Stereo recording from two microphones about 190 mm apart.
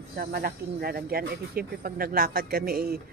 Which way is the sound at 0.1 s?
55° right (ahead or behind).